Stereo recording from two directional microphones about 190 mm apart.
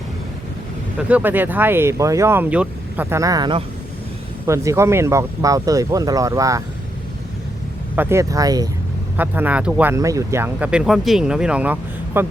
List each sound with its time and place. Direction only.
1.0 s speech: 10° right (ahead or behind)
7.9 s speech: 15° right (ahead or behind)